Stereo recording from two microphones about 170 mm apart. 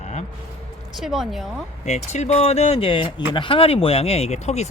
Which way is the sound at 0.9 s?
Centre (ahead or behind).